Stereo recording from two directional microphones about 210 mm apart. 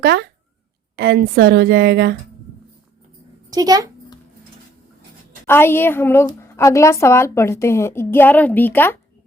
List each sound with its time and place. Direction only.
0.0 s a woman's voice: 50° right (ahead or behind)
3.5 s speech: 20° right (ahead or behind)
5.5 s a woman's voice: 10° left (ahead or behind)